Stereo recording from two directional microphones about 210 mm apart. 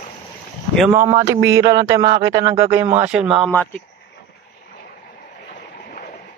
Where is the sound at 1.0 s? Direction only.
20° right (ahead or behind); by 3.8 s 5° left (ahead or behind).